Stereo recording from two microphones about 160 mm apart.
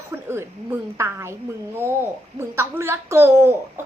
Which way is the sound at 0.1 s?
15° right (ahead or behind).